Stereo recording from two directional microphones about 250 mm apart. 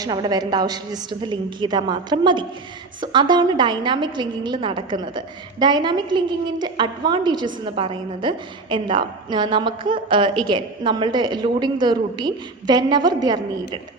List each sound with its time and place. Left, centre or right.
0.0 s a woman's voice: centre